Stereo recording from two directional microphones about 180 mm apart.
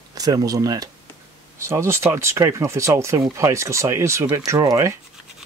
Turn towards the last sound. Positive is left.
turn(degrees=-20)  # may be behind; listen again after turning